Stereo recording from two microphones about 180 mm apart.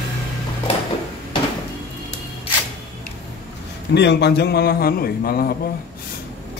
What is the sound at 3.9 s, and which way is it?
A man's voice, 70° left (ahead or behind).